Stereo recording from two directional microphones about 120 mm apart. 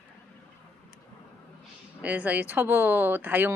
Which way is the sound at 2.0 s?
10° right (ahead or behind).